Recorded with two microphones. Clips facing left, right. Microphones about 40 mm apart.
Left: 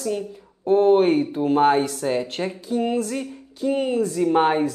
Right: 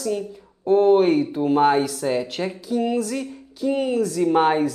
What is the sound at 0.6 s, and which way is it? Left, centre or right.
A woman's voice, centre.